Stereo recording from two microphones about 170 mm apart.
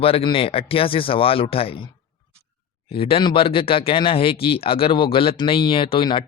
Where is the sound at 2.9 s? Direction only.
35° left (ahead or behind).